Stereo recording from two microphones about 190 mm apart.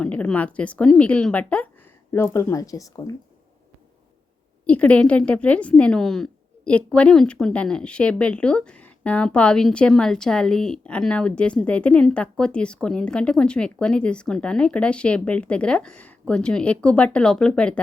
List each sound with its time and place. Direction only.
0.0 s a woman's voice: 5° left (ahead or behind)
4.6 s a woman's voice: 5° left (ahead or behind)